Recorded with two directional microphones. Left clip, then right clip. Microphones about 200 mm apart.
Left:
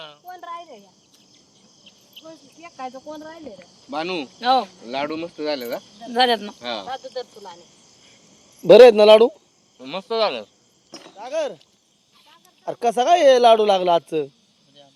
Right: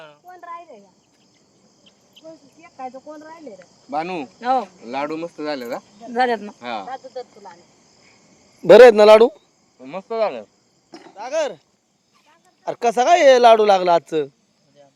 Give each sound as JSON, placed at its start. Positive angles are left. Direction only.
{"t": 0.0, "sound": "cricket", "side_deg": -5}
{"t": 2.2, "sound": "cricket", "side_deg": -50}
{"t": 2.6, "sound": "a man's voice", "side_deg": -15}
{"t": 3.8, "sound": "speech", "side_deg": -50}
{"t": 4.4, "sound": "speech", "side_deg": -5}
{"t": 4.9, "sound": "speech", "side_deg": -45}
{"t": 6.1, "sound": "speech", "side_deg": -5}
{"t": 6.6, "sound": "speech", "side_deg": -50}
{"t": 8.6, "sound": "a man's voice", "side_deg": -10}
{"t": 12.6, "sound": "a man's voice", "side_deg": -10}